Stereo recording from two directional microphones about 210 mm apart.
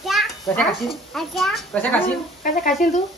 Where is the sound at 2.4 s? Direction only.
40° left (ahead or behind).